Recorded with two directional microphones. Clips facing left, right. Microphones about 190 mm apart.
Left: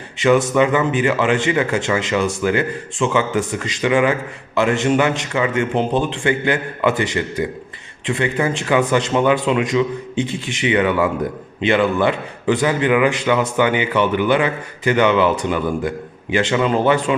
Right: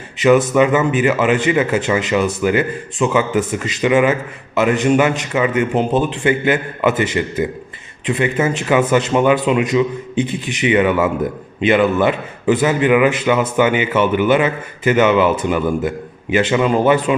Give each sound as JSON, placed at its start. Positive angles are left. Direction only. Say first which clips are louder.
{"t": 0.2, "sound": "speech", "louder": "right 2 dB", "side_deg": -20}